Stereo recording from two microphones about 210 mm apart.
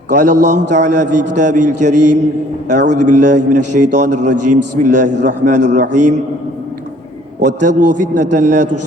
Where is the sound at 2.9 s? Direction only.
35° right (ahead or behind).